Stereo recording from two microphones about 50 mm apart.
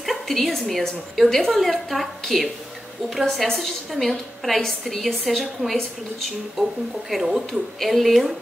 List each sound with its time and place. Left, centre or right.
0.0 s a woman's voice: centre
7.1 s a woman's voice: centre